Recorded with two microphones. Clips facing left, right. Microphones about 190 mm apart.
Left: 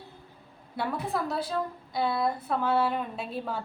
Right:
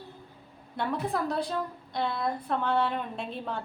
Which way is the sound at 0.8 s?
5° left (ahead or behind).